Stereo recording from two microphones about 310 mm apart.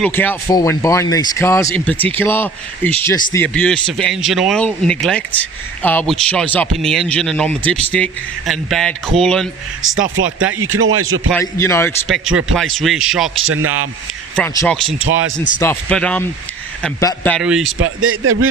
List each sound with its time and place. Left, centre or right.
0.0 s speech: centre
10.6 s speech: right
11.3 s speech: centre
13.3 s a man's voice: right
14.3 s speech: centre
14.9 s speech: right
15.6 s speech: centre
17.7 s speech: right